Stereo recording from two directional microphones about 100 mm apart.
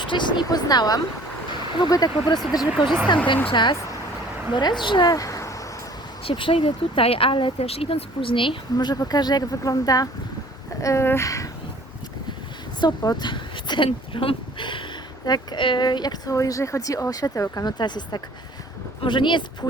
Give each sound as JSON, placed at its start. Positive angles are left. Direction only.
{"t": 0.0, "sound": "speech", "side_deg": 50}
{"t": 2.8, "sound": "speech", "side_deg": 55}
{"t": 5.0, "sound": "a sound", "side_deg": 35}
{"t": 6.2, "sound": "speech", "side_deg": 60}
{"t": 12.8, "sound": "speech", "side_deg": 45}